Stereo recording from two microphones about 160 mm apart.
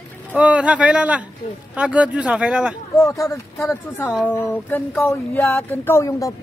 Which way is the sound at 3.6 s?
15° left (ahead or behind).